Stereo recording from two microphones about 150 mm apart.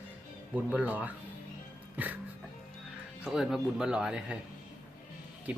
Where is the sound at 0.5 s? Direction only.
10° right (ahead or behind).